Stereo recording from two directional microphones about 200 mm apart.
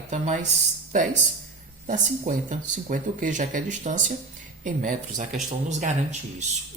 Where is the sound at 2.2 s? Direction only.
40° right (ahead or behind).